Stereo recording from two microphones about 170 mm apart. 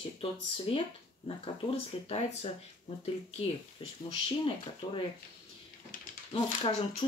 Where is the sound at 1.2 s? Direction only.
35° left (ahead or behind).